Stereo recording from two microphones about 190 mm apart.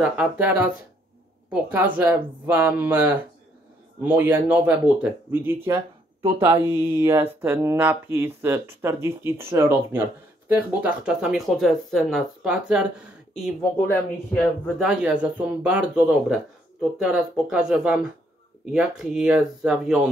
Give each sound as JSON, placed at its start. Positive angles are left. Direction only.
{"t": 0.0, "sound": "speech", "side_deg": -5}
{"t": 14.8, "sound": "speech", "side_deg": -5}